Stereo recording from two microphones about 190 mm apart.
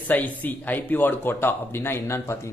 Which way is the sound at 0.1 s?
10° left (ahead or behind).